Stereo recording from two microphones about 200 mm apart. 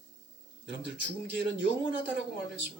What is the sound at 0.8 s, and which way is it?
Speech, 65° right (ahead or behind).